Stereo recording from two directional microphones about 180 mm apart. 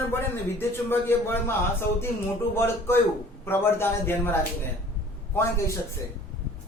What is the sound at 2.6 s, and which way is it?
A man's voice, 15° left (ahead or behind).